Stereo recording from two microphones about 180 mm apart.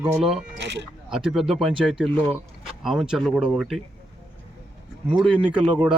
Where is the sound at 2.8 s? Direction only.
5° right (ahead or behind).